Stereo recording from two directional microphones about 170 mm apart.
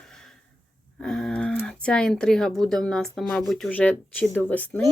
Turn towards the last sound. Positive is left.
turn(degrees=10)  # may be behind; listen again after turning